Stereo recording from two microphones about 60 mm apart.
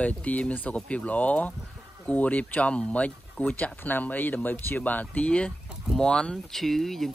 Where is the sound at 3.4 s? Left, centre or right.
Left; by 7.1 s centre.